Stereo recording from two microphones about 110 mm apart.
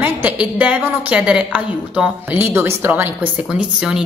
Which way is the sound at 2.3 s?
20° right (ahead or behind).